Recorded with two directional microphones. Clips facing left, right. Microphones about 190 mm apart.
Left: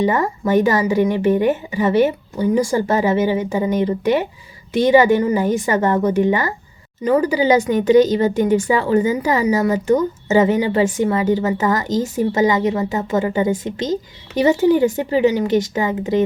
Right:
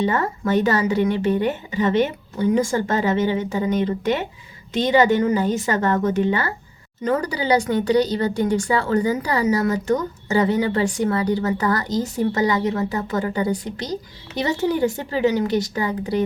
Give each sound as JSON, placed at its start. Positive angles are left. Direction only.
{"t": 0.0, "sound": "speech", "side_deg": 15}